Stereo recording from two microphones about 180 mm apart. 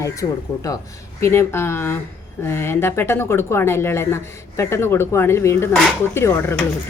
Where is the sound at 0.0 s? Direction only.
20° left (ahead or behind).